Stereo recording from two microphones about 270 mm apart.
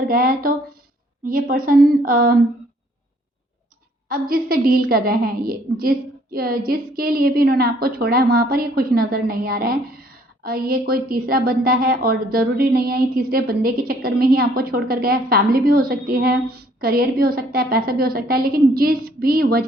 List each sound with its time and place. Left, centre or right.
0.1 s a woman's voice: right
4.1 s a woman's voice: right